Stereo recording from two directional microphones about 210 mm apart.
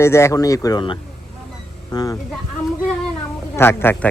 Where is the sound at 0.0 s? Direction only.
15° left (ahead or behind).